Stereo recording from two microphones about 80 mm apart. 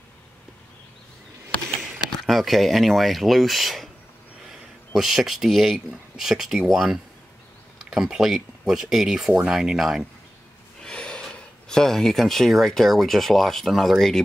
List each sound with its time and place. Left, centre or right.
2.2 s speech: centre
10.8 s speech: centre